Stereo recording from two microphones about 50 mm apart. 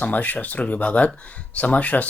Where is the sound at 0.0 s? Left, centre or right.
Left.